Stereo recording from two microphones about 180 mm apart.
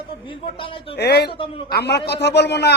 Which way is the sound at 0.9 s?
65° left (ahead or behind).